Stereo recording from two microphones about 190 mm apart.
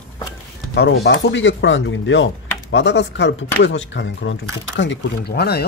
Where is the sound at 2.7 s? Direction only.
65° left (ahead or behind).